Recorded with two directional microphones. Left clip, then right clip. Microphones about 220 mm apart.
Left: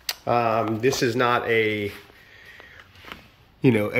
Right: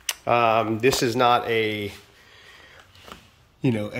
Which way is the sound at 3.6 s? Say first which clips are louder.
Left 6 dB; centre (ahead or behind).